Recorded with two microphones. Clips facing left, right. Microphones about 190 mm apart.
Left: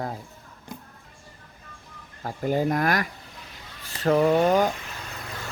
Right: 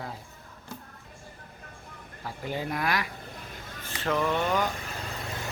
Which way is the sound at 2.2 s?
45° left (ahead or behind).